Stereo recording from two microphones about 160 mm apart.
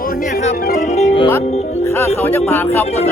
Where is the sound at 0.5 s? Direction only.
65° left (ahead or behind).